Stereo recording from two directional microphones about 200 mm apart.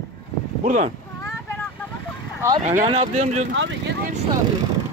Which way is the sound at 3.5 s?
65° right (ahead or behind).